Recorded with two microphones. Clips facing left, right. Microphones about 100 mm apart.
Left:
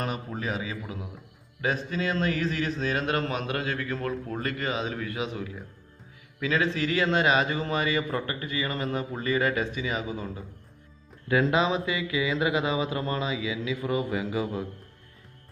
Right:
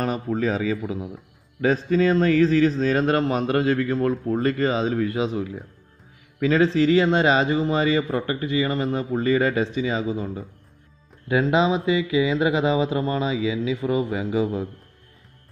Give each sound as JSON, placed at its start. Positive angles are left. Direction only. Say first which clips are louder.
{"t": 0.0, "sound": "a man's voice", "louder": "right 8 dB", "side_deg": -35}